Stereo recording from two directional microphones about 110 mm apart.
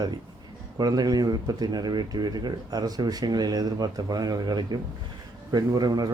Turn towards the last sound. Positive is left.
turn(degrees=-40)  # may be behind; listen again after turning